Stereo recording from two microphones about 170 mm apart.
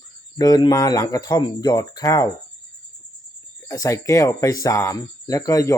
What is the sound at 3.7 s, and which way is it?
Speech, 20° left (ahead or behind).